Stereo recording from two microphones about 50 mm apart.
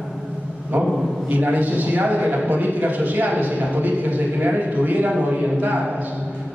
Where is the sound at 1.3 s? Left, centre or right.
Right.